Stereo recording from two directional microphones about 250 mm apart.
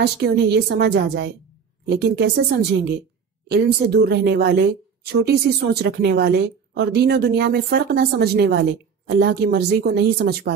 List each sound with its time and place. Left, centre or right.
0.0 s speech: right
3.4 s speech: right